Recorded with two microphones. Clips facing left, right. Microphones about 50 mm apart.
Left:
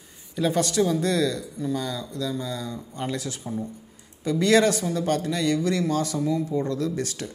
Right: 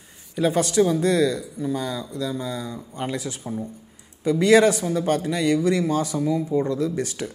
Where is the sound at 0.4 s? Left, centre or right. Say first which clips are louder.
Right 3 dB; centre.